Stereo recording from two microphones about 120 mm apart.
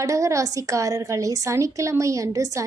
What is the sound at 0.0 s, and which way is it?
A woman's voice, 25° right (ahead or behind).